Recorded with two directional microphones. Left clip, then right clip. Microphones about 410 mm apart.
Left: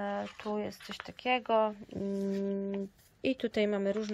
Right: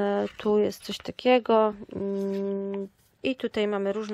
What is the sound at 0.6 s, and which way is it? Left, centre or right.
Speech, centre.